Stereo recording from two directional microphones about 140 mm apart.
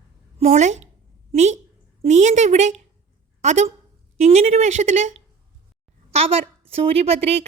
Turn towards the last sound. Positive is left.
turn(degrees=-45)  # may be behind; listen again after turning